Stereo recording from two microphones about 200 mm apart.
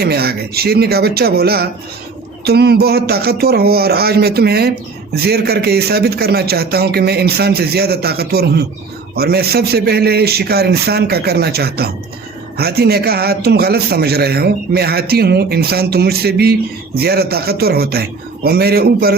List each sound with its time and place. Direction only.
0.0 s a man's voice: 50° right (ahead or behind)